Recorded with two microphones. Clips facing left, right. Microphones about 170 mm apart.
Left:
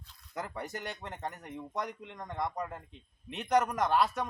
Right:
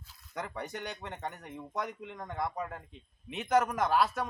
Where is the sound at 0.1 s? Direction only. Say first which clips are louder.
Even; centre (ahead or behind).